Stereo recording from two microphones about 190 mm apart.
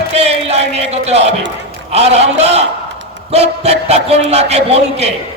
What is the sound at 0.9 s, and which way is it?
A man's voice, 35° right (ahead or behind).